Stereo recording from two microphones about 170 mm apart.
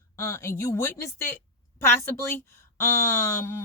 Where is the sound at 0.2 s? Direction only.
15° left (ahead or behind).